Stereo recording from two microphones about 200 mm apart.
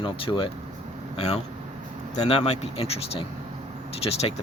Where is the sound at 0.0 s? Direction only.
25° left (ahead or behind).